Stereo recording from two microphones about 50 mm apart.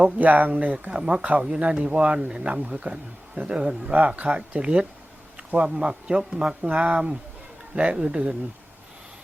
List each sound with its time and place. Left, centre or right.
0.2 s speech: right
3.9 s speech: right
5.4 s a sound: right
5.7 s a man's voice: centre
6.7 s speech: right